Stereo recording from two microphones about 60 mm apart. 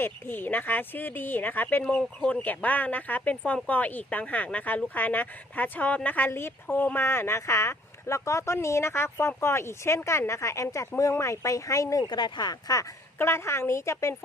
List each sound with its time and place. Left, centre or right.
0.0 s speech: left
2.0 s speech: centre
7.0 s speech: left
12.7 s speech: left
13.1 s speech: left